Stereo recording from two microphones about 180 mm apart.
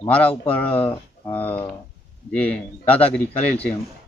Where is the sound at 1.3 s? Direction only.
10° left (ahead or behind).